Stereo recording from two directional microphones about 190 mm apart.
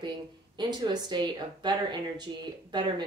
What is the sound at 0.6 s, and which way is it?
Speech, 20° right (ahead or behind).